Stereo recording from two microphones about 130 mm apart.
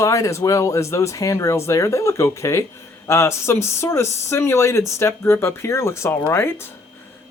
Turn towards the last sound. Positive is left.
turn(degrees=20)  # may be behind; listen again after turning